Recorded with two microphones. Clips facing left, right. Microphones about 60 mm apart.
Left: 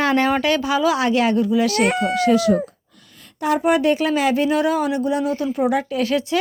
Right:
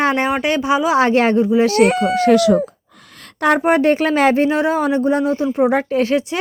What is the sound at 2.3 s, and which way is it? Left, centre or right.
Speech, right.